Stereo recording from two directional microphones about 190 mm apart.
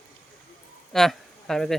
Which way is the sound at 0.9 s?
Centre (ahead or behind).